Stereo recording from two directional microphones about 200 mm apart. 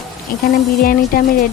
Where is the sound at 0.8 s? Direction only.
45° left (ahead or behind).